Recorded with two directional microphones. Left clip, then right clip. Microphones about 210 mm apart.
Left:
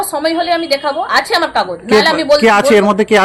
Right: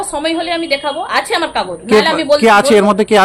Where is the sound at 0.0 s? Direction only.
Centre (ahead or behind).